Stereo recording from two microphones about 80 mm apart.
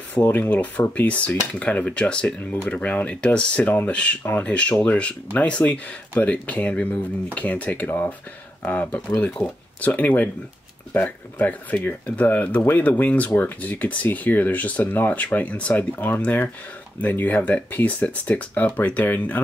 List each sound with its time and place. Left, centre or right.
0.3 s speech: left
9.8 s speech: centre